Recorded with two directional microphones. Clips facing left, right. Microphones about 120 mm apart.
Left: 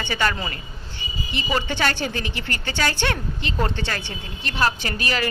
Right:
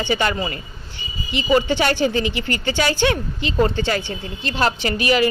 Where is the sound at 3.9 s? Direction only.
15° right (ahead or behind).